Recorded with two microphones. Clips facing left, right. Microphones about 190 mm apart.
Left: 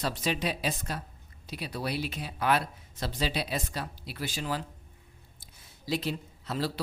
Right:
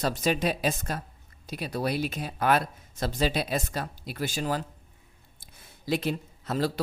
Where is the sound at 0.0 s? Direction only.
45° right (ahead or behind).